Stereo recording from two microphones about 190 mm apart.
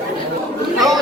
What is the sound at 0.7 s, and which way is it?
Speech, centre (ahead or behind).